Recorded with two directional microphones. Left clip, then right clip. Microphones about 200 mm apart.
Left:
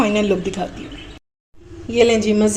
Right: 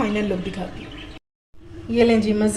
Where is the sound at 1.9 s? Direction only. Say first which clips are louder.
Left 3 dB; 45° left (ahead or behind).